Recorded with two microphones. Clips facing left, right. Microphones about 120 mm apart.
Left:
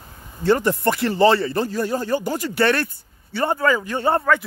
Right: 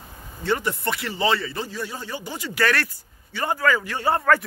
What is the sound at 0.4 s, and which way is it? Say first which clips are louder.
Speech: left 6 dB; 40° left (ahead or behind).